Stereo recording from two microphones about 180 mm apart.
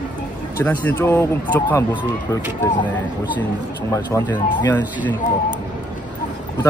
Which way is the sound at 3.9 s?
20° left (ahead or behind).